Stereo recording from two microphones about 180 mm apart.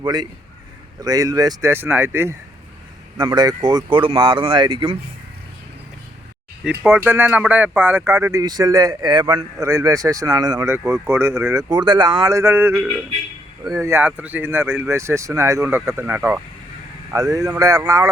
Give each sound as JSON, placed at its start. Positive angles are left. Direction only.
{"t": 0.0, "sound": "speech", "side_deg": -25}
{"t": 3.2, "sound": "speech", "side_deg": -25}
{"t": 6.7, "sound": "speech", "side_deg": -10}
{"t": 11.7, "sound": "speech", "side_deg": -25}